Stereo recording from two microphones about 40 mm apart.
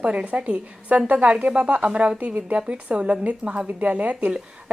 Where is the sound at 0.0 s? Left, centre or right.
Right.